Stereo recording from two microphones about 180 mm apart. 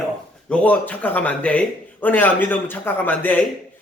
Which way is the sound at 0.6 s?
10° left (ahead or behind).